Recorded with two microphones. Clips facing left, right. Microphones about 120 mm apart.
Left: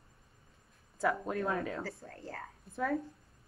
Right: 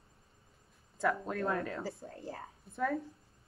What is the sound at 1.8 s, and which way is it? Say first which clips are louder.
Speech: right 2 dB; 15° right (ahead or behind).